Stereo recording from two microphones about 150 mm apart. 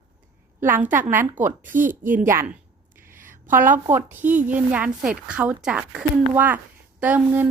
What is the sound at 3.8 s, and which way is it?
A woman's voice, 15° right (ahead or behind).